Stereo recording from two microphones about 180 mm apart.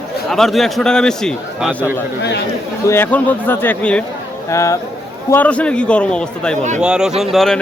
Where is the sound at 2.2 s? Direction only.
70° left (ahead or behind).